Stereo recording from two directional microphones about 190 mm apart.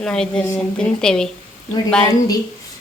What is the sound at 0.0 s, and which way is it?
A woman's voice, 5° left (ahead or behind).